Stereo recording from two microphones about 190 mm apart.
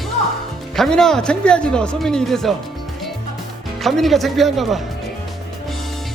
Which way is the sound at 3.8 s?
Centre (ahead or behind).